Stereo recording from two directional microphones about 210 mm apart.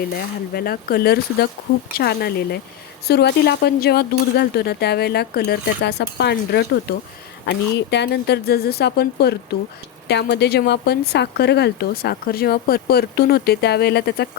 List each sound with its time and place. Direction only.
0.5 s speech: 45° left (ahead or behind)